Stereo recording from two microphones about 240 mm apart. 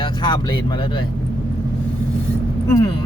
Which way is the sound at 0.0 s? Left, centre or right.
Centre.